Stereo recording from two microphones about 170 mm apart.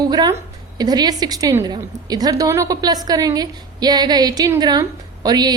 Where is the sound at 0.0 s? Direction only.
25° right (ahead or behind).